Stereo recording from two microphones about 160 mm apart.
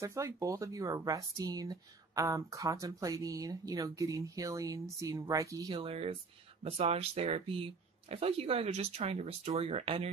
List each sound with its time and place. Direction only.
0.0 s speech: 20° right (ahead or behind)
5.8 s speech: 35° right (ahead or behind)